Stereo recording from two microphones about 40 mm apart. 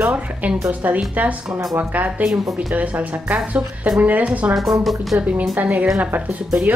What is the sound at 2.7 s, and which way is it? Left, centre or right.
Speech, right.